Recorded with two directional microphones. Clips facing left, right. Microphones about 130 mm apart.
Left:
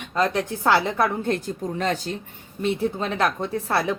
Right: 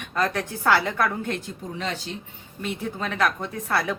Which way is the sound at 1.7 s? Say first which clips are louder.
Left 5 dB; 45° left (ahead or behind).